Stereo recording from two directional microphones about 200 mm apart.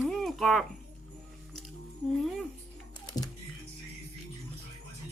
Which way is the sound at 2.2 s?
Centre (ahead or behind).